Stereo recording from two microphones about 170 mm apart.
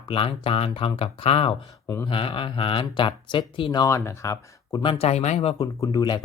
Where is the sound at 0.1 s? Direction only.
30° left (ahead or behind).